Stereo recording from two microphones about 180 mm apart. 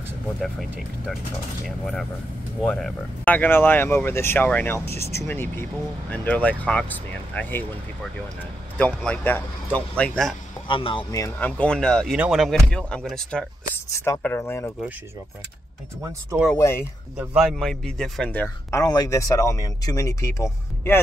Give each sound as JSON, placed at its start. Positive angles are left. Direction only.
{"t": 0.4, "sound": "speech", "side_deg": 0}
{"t": 2.6, "sound": "speech", "side_deg": 5}
{"t": 8.7, "sound": "speech", "side_deg": 10}
{"t": 10.7, "sound": "speech", "side_deg": 30}
{"t": 13.9, "sound": "speech", "side_deg": 15}
{"t": 16.5, "sound": "speech", "side_deg": 15}
{"t": 17.2, "sound": "speech", "side_deg": -5}